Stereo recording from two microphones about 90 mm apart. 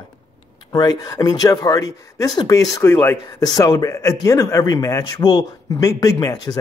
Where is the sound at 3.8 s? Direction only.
40° left (ahead or behind).